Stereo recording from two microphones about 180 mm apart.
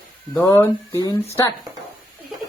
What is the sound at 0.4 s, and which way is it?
Speech, 15° left (ahead or behind).